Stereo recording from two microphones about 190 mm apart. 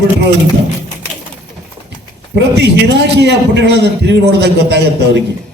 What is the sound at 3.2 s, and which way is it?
A man's voice, 65° right (ahead or behind).